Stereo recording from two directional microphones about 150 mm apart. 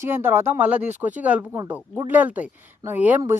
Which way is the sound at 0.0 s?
15° right (ahead or behind).